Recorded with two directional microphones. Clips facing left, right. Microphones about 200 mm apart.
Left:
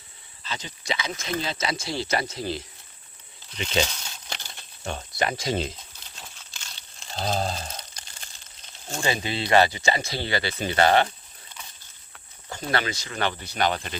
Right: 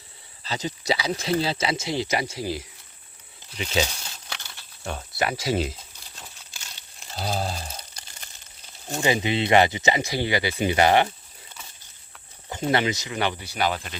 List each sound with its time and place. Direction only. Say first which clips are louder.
0.4 s speech: right 6 dB; 40° right (ahead or behind); by 3.8 s 5° right (ahead or behind)
4.8 s crumpling: even; 5° right (ahead or behind)
8.6 s speech: right 4 dB; 15° right (ahead or behind)
12.5 s speech: right 4 dB; 20° right (ahead or behind); by 13.9 s 5° right (ahead or behind)